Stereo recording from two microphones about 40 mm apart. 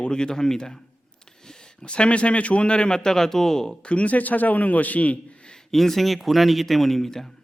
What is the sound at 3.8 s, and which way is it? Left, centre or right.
A man's voice, left.